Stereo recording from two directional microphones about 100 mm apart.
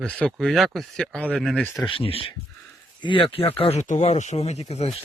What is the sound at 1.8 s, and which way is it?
Speech, 65° left (ahead or behind).